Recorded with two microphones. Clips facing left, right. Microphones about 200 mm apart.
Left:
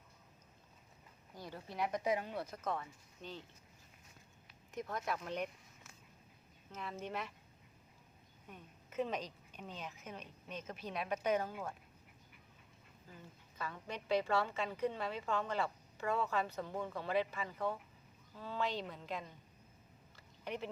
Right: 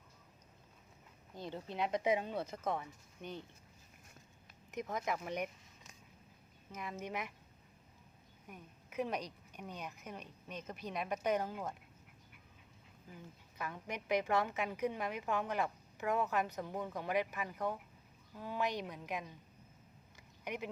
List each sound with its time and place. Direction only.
1.4 s speech: 20° right (ahead or behind)
4.7 s a woman's voice: 20° right (ahead or behind)
8.4 s a woman's voice: 10° right (ahead or behind)
13.6 s a woman's voice: 15° right (ahead or behind)
20.1 s a sound: 15° right (ahead or behind)